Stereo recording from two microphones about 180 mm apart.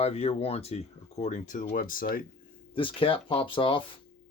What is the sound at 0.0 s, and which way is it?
Speech, 35° left (ahead or behind).